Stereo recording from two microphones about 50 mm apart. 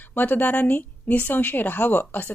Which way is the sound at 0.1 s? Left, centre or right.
Left.